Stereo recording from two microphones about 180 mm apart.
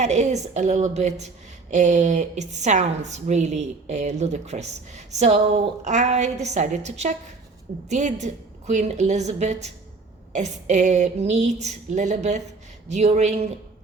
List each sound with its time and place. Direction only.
0.0 s a woman's voice: 40° right (ahead or behind)